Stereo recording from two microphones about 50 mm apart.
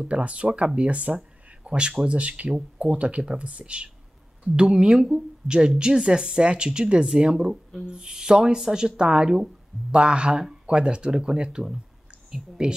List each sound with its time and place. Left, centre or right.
0.0 s speech: right